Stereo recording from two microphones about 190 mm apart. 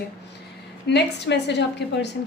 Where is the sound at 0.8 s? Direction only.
65° left (ahead or behind).